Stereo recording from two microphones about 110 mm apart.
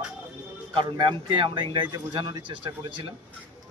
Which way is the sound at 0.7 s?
50° right (ahead or behind).